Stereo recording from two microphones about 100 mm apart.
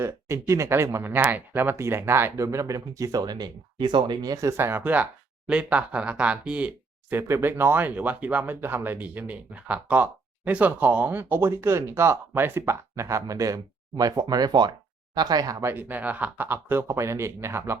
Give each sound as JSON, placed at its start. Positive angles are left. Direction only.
{"t": 0.0, "sound": "speech", "side_deg": -30}
{"t": 15.6, "sound": "speech", "side_deg": -20}